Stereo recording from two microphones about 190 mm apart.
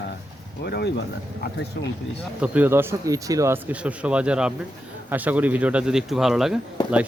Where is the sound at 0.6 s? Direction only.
60° left (ahead or behind).